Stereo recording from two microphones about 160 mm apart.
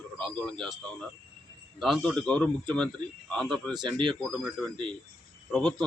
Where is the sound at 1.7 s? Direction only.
Centre (ahead or behind).